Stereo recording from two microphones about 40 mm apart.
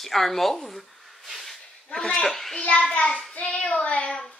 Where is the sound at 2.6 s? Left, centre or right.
Left.